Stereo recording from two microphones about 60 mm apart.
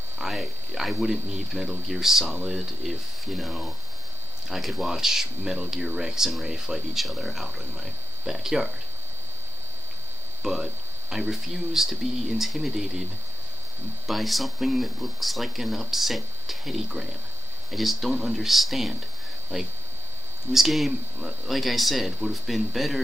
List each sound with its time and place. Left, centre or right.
0.2 s speech: centre
10.4 s speech: centre
14.0 s speech: centre